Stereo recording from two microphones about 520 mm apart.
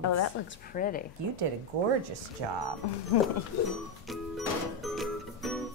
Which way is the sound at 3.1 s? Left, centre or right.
Left.